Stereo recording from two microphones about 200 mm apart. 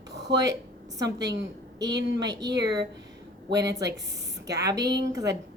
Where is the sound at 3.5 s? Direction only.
15° right (ahead or behind).